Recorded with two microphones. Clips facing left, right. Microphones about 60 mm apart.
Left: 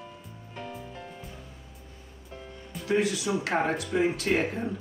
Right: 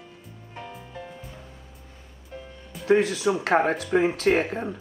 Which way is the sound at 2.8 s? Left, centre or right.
Right.